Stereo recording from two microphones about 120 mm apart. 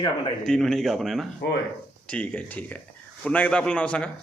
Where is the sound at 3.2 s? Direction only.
10° left (ahead or behind).